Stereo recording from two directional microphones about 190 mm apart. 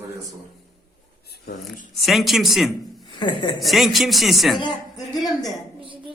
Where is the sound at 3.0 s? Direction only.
25° left (ahead or behind).